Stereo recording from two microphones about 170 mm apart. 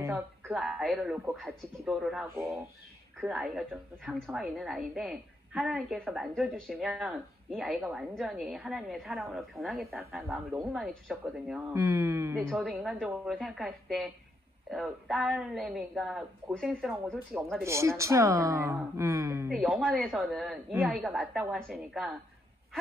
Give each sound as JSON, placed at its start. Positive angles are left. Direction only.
{"t": 0.0, "sound": "speech", "side_deg": -10}
{"t": 0.6, "sound": "a woman's voice", "side_deg": 0}
{"t": 10.2, "sound": "a woman's voice", "side_deg": -10}
{"t": 11.7, "sound": "speech", "side_deg": -15}
{"t": 12.4, "sound": "a woman's voice", "side_deg": 0}
{"t": 17.6, "sound": "speech", "side_deg": -15}
{"t": 19.5, "sound": "a woman's voice", "side_deg": -5}